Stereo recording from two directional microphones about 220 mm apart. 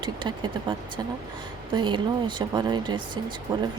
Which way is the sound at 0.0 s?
20° right (ahead or behind).